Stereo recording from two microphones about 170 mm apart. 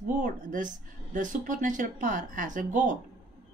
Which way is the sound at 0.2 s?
50° right (ahead or behind).